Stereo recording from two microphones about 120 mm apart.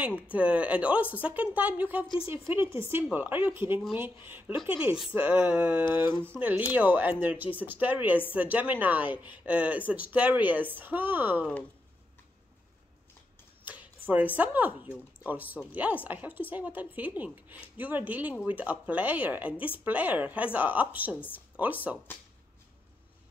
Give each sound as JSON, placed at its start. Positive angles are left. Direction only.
{"t": 0.3, "sound": "speech", "side_deg": -10}
{"t": 13.7, "sound": "speech", "side_deg": -15}